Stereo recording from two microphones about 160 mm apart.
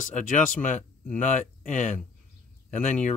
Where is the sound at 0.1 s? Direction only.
50° left (ahead or behind).